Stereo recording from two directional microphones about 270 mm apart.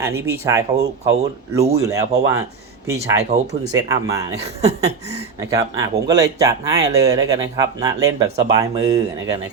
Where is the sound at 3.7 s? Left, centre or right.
Centre.